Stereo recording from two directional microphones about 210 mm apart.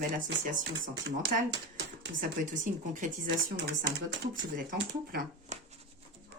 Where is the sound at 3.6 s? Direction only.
45° right (ahead or behind).